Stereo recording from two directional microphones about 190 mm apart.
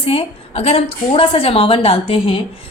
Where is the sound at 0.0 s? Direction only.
30° left (ahead or behind).